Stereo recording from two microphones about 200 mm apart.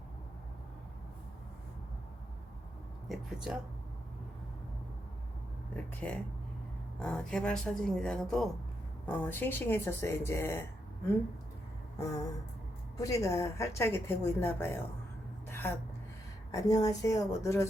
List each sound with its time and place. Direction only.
3.1 s speech: 5° right (ahead or behind)
5.7 s a woman's voice: 5° left (ahead or behind)
11.9 s a sound: 15° left (ahead or behind)
13.0 s a woman's voice: 15° left (ahead or behind)
15.4 s a sound: 10° left (ahead or behind)
16.5 s a woman's voice: 20° left (ahead or behind)